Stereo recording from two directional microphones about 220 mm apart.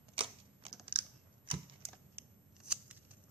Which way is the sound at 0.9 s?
25° right (ahead or behind).